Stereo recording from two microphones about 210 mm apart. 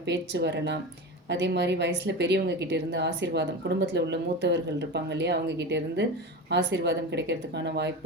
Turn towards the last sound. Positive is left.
turn(degrees=-55)  # may be behind; listen again after turning